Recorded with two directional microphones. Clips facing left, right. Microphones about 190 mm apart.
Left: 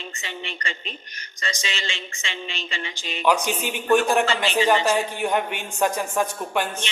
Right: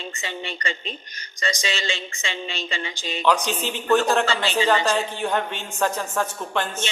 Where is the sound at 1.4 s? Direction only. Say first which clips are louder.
Right 4 dB; 35° right (ahead or behind).